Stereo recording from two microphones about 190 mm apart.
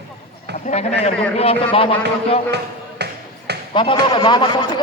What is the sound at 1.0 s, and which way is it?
Speech, 30° left (ahead or behind).